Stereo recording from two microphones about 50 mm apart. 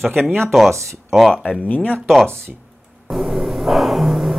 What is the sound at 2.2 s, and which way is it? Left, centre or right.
Speech, centre.